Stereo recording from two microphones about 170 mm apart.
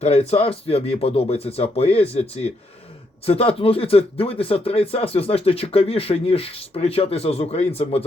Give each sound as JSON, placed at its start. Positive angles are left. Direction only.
{"t": 0.0, "sound": "speech", "side_deg": 40}